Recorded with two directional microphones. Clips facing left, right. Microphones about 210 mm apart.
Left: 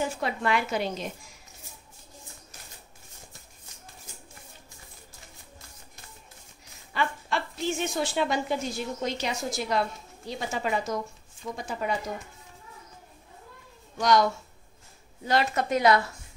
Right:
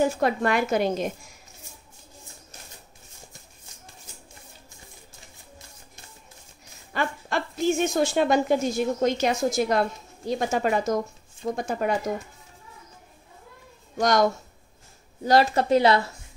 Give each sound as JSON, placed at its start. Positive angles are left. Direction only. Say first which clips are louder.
{"t": 0.0, "sound": "speech", "louder": "right 7 dB", "side_deg": -45}
{"t": 6.9, "sound": "speech", "louder": "right 2 dB", "side_deg": -45}
{"t": 13.9, "sound": "speech", "louder": "right 2 dB", "side_deg": -45}
{"t": 15.2, "sound": "speech", "louder": "right 6 dB", "side_deg": -35}